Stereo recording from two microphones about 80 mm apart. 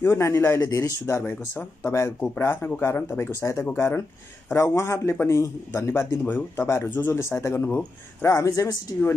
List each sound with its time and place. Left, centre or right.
0.0 s speech: left
3.3 s speech: left
8.3 s speech: left